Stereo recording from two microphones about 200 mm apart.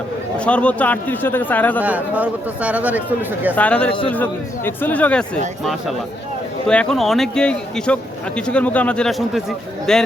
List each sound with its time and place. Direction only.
0.3 s a man's voice: 5° left (ahead or behind)
1.8 s speech: 5° right (ahead or behind)
3.5 s a man's voice: 5° left (ahead or behind)
3.8 s a man's voice: 25° left (ahead or behind)
4.1 s a man's voice: 10° left (ahead or behind)
6.7 s a man's voice: 5° left (ahead or behind)